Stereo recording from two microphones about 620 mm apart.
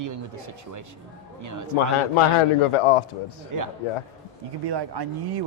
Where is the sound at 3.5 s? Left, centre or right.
Right.